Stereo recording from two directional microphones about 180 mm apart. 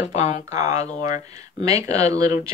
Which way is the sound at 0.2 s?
40° left (ahead or behind).